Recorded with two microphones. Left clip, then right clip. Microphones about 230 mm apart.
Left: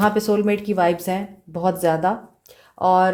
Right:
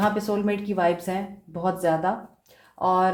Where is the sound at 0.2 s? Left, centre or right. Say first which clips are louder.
Left 6 dB; left.